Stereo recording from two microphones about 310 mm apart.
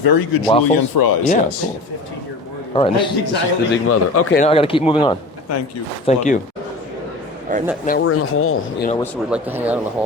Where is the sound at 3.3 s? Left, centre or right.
Left.